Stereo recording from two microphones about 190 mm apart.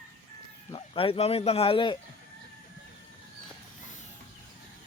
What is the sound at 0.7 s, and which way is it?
Speech, 30° left (ahead or behind).